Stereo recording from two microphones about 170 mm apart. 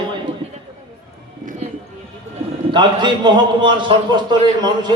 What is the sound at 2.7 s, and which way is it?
A man's voice, 25° right (ahead or behind).